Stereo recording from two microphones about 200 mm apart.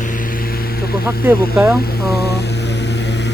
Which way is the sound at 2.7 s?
60° left (ahead or behind).